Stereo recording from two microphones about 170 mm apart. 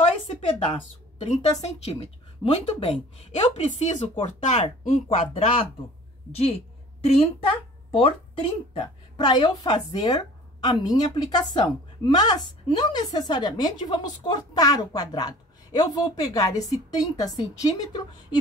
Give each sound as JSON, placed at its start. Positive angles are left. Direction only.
{"t": 1.2, "sound": "a woman's voice", "side_deg": 40}